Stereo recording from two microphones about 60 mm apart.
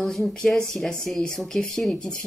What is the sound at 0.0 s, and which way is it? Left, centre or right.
Speech, centre.